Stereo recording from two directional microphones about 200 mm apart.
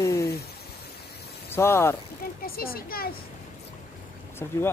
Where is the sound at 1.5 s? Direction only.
10° left (ahead or behind).